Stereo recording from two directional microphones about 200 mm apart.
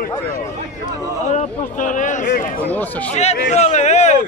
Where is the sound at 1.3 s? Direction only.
40° left (ahead or behind).